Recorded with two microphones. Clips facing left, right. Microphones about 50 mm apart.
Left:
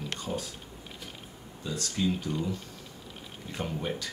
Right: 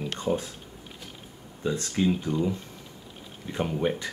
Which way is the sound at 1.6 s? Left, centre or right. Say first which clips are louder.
Right 5 dB; right.